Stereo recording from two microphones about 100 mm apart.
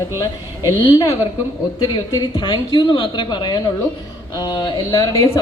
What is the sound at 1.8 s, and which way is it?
A woman's voice, 45° left (ahead or behind).